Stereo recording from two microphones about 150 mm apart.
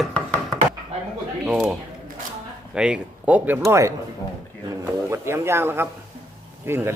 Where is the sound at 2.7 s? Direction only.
5° right (ahead or behind).